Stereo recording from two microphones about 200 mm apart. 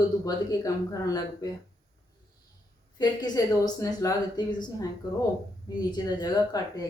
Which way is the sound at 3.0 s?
20° left (ahead or behind).